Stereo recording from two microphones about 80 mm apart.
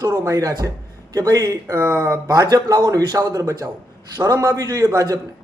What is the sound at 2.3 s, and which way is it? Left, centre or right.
Speech, right.